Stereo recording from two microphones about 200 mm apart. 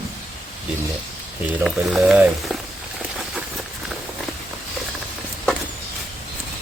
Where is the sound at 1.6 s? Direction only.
Centre (ahead or behind).